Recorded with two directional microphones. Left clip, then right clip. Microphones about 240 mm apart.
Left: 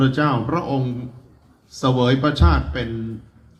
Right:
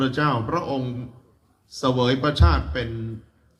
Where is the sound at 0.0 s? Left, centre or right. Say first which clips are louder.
Left 3 dB; right.